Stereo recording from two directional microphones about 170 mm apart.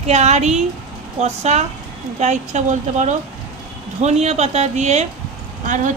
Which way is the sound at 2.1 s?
45° right (ahead or behind).